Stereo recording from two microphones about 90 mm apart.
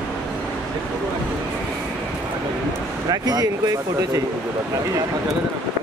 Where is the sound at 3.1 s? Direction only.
45° right (ahead or behind).